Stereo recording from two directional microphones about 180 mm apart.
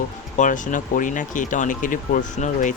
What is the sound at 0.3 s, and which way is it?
Speech, 45° left (ahead or behind).